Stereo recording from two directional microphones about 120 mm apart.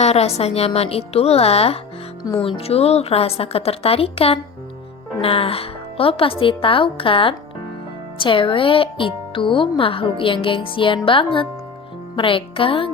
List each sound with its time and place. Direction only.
0.0 s a woman's voice: 60° left (ahead or behind)